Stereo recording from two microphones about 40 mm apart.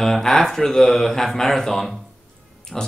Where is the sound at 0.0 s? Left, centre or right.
Centre.